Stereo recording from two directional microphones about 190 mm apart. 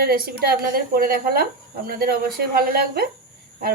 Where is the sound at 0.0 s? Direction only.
50° right (ahead or behind).